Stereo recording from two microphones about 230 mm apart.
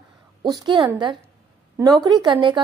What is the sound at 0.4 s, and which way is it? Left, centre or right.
A woman's voice, centre.